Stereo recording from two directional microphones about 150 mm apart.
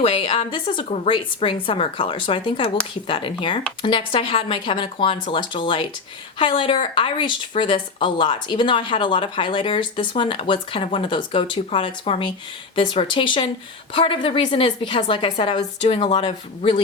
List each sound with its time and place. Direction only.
0.0 s speech: 40° left (ahead or behind)